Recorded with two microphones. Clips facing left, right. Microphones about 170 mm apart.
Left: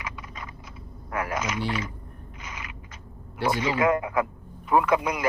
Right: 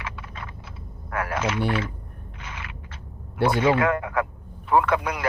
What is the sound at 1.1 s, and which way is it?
Speech, 50° right (ahead or behind).